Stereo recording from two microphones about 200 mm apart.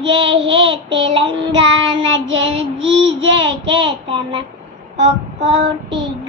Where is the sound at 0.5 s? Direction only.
25° right (ahead or behind).